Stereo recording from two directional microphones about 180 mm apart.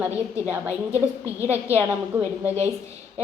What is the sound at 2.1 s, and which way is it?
Speech, 10° right (ahead or behind).